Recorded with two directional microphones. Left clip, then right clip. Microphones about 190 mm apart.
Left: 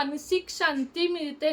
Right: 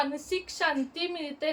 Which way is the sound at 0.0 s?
25° left (ahead or behind).